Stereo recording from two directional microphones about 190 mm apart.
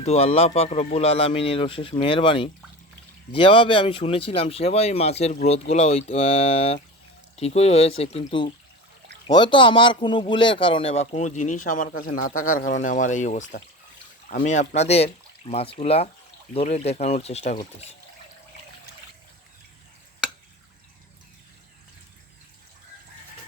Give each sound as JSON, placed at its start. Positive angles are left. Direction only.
{"t": 0.0, "sound": "speech", "side_deg": 35}